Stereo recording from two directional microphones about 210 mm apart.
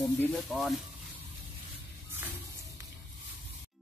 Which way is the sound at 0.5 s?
Centre (ahead or behind).